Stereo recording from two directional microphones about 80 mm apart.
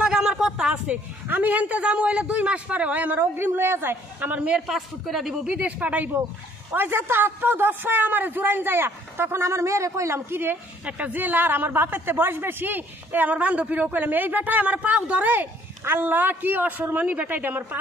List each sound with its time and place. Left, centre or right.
0.0 s a sound: centre
1.3 s speech: right
4.4 s a woman's voice: centre
5.6 s speech: centre